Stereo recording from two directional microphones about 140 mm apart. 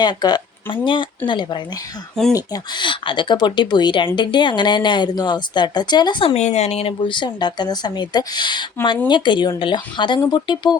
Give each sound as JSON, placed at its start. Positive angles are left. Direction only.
{"t": 0.0, "sound": "speech", "side_deg": 30}
{"t": 6.3, "sound": "speech", "side_deg": 50}